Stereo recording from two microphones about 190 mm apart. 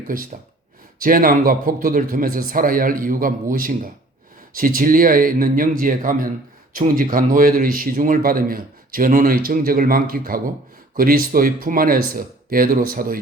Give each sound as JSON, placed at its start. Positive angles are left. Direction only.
{"t": 0.1, "sound": "speech", "side_deg": -45}